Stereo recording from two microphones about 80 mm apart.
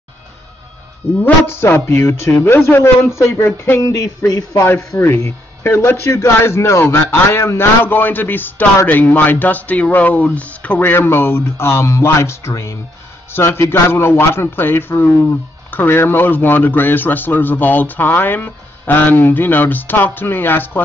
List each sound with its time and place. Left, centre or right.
1.2 s a man's voice: left
3.8 s a man's voice: left
4.6 s a man's voice: left